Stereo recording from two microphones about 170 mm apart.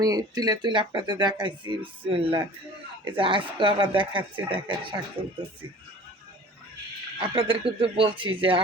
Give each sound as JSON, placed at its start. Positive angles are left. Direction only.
{"t": 0.0, "sound": "speech", "side_deg": -20}
{"t": 7.2, "sound": "speech", "side_deg": -30}